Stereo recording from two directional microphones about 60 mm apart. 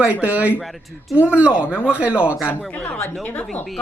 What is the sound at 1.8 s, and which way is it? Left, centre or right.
Speech, centre.